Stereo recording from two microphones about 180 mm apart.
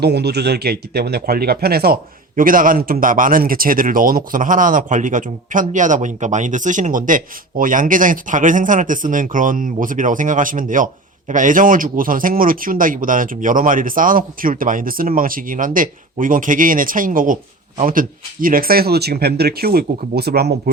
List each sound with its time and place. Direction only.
0.0 s speech: 65° right (ahead or behind)